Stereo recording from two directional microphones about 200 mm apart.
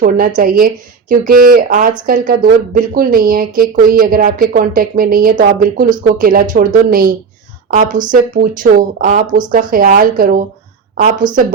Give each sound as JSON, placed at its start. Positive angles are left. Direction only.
{"t": 0.0, "sound": "speech", "side_deg": -45}
{"t": 11.2, "sound": "speech", "side_deg": -20}